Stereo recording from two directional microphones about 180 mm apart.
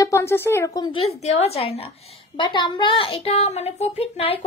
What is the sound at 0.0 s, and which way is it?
Speech, 15° left (ahead or behind).